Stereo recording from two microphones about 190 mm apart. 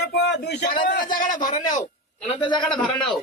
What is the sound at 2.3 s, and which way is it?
Speech, 25° left (ahead or behind).